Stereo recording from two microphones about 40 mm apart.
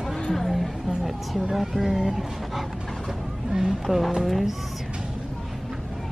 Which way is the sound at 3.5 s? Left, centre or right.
Centre.